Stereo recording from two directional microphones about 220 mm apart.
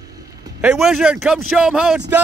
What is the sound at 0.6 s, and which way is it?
Speech, 5° right (ahead or behind).